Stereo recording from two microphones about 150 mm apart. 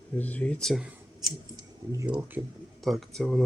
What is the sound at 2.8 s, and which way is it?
Speech, centre (ahead or behind).